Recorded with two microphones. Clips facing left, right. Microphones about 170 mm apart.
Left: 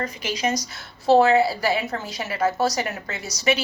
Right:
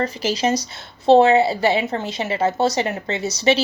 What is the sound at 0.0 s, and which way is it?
A woman's voice, 30° right (ahead or behind).